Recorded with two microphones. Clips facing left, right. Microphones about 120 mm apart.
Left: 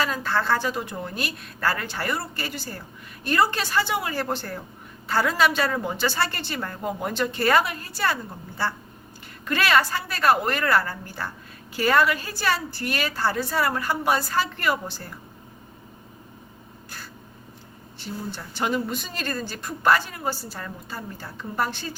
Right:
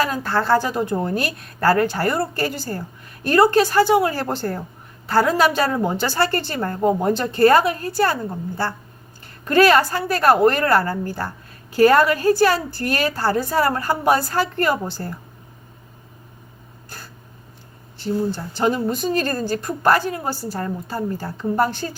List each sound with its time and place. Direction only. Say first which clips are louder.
0.0 s a woman's voice: right 4 dB; 50° right (ahead or behind)
18.0 s a woman's voice: right 11 dB; 40° right (ahead or behind)